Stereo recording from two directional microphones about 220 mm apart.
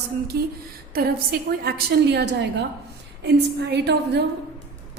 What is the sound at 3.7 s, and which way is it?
Speech, 50° right (ahead or behind).